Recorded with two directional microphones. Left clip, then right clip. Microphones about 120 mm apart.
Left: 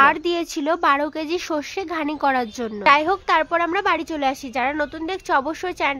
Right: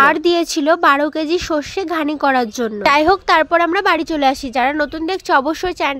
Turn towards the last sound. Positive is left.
turn(degrees=-35)  # may be behind; listen again after turning